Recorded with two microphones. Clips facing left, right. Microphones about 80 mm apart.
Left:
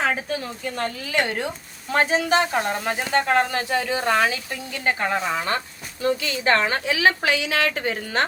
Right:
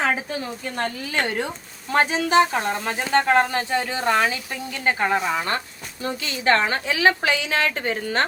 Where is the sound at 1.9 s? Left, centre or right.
Left.